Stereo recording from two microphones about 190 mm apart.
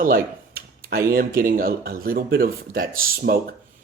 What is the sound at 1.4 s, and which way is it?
Speech, 50° right (ahead or behind).